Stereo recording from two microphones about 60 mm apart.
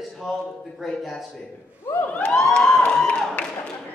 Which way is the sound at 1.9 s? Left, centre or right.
Left.